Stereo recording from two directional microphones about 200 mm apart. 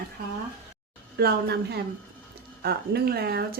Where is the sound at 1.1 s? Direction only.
55° right (ahead or behind).